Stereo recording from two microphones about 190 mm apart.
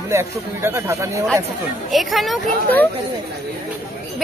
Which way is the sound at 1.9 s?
Centre (ahead or behind).